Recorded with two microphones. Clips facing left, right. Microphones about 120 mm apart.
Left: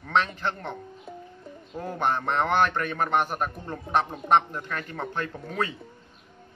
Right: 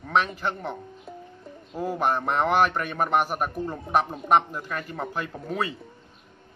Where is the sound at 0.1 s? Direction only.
5° right (ahead or behind).